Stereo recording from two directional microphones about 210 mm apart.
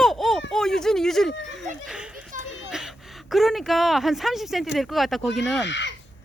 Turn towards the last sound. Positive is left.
turn(degrees=55)  # may be behind; listen again after turning